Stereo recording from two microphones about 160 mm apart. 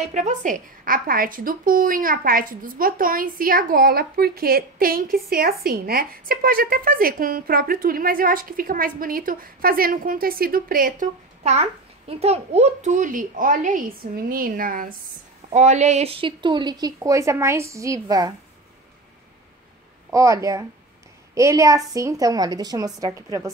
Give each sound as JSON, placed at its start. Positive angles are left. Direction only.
{"t": 0.1, "sound": "a woman's voice", "side_deg": -50}
{"t": 11.4, "sound": "a child's voice", "side_deg": -40}
{"t": 15.5, "sound": "speech", "side_deg": -45}
{"t": 20.2, "sound": "speech", "side_deg": -20}